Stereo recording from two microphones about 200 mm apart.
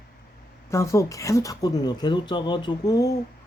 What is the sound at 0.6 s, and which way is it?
A woman's voice, 15° left (ahead or behind).